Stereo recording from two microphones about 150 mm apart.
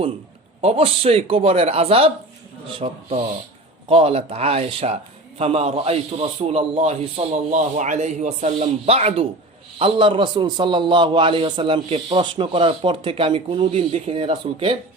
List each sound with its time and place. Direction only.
0.6 s a man's voice: 40° right (ahead or behind)
7.5 s a man's voice: 55° right (ahead or behind); by 14.8 s 35° right (ahead or behind)